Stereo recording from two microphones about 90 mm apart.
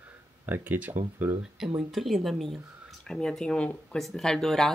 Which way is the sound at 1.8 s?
5° right (ahead or behind).